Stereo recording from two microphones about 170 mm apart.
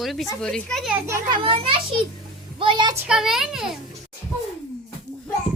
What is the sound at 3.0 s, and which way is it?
Speech, 5° right (ahead or behind).